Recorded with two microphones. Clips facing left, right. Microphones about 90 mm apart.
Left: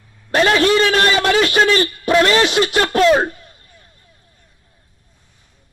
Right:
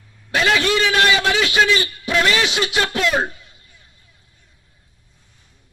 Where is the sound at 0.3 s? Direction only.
40° left (ahead or behind).